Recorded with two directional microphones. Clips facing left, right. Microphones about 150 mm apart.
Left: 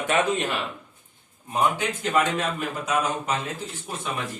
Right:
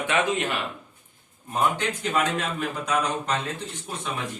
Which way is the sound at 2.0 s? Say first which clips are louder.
Left 3 dB; centre (ahead or behind).